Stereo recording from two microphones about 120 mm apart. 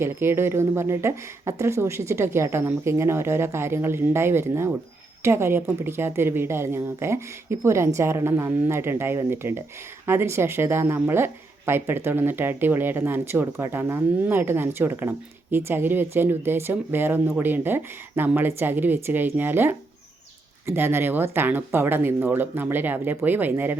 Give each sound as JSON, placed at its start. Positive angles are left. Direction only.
{"t": 0.0, "sound": "speech", "side_deg": -20}